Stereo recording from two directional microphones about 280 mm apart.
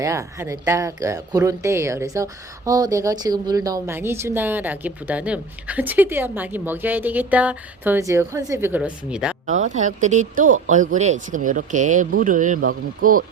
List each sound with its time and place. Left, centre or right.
0.0 s speech: centre
9.5 s speech: right